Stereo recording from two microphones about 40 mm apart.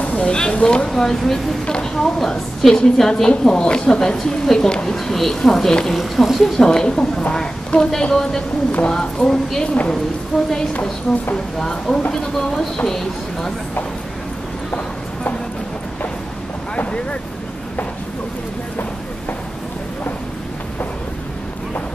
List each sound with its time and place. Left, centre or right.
0.0 s a sound: left
0.3 s a woman's voice: left
0.8 s a woman's voice: centre
4.9 s a woman's voice: centre
5.9 s speech: centre
6.6 s a woman's voice: centre
10.3 s speech: centre
11.5 s a woman's voice: centre
16.7 s boat: left